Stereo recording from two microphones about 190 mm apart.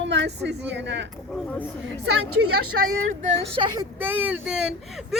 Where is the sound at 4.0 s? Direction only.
10° right (ahead or behind).